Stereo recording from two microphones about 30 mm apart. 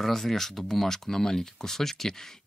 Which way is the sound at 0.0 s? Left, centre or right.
Centre.